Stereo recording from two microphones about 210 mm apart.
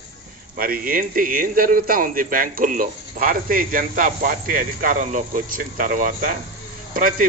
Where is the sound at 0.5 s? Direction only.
45° right (ahead or behind).